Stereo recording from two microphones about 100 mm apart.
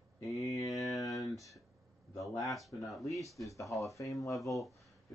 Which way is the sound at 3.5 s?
30° left (ahead or behind).